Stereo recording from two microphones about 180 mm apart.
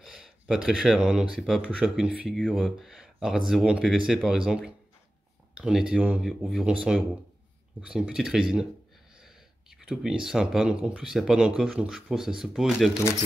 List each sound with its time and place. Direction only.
0.0 s speech: centre (ahead or behind)
9.2 s a sound: 5° right (ahead or behind)
10.2 s speech: 5° right (ahead or behind)